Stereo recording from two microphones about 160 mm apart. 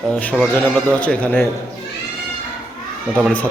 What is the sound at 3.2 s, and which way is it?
Speech, 10° left (ahead or behind).